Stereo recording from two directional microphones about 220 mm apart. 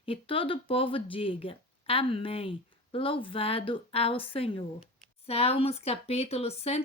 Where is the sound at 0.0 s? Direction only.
25° left (ahead or behind).